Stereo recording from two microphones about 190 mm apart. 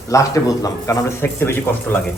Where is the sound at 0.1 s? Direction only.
15° left (ahead or behind).